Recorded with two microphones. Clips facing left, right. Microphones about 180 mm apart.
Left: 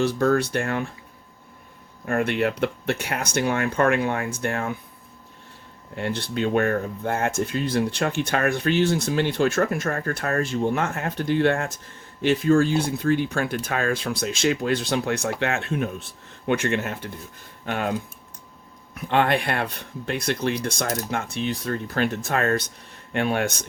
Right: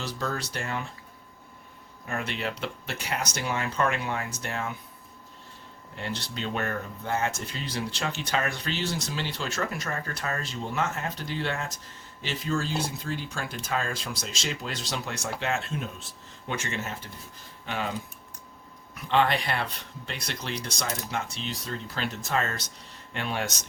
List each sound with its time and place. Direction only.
0.0 s speech: 55° left (ahead or behind)
2.0 s speech: 55° left (ahead or behind)
6.0 s speech: 55° left (ahead or behind)
18.9 s speech: 55° left (ahead or behind)